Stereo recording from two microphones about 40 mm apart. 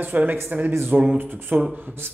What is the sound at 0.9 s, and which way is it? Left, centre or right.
Speech, right.